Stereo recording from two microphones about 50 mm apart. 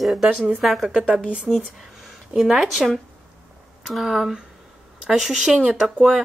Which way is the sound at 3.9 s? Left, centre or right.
Centre.